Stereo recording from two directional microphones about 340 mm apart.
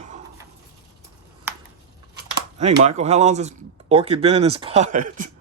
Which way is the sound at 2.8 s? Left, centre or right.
Centre.